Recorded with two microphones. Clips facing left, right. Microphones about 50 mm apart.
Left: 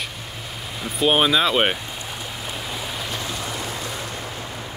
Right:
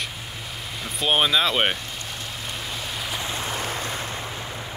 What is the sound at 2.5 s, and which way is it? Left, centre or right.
Stream, centre.